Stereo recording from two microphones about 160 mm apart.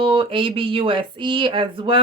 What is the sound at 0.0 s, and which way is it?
Speech, 35° right (ahead or behind).